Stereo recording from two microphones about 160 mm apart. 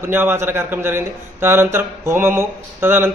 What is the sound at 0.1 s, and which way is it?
A man's voice, 15° right (ahead or behind).